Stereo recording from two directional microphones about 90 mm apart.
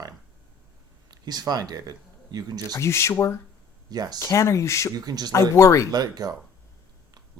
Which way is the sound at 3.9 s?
45° right (ahead or behind).